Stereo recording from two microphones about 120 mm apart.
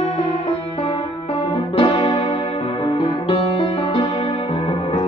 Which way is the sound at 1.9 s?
40° left (ahead or behind).